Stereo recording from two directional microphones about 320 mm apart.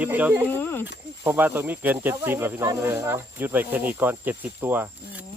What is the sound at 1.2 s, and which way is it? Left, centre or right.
Speech, centre.